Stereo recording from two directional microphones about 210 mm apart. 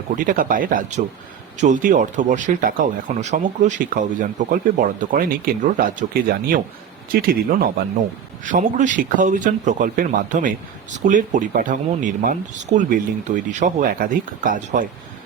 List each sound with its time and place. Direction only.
0.2 s speech: 40° right (ahead or behind)